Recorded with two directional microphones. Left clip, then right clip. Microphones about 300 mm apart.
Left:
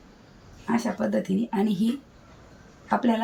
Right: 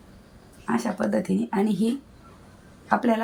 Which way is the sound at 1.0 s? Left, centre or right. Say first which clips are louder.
Right 1 dB; centre.